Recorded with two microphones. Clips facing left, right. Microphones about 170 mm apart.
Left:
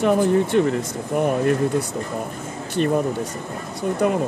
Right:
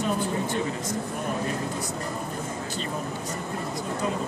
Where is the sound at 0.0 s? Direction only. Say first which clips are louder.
Left 10 dB; 65° left (ahead or behind).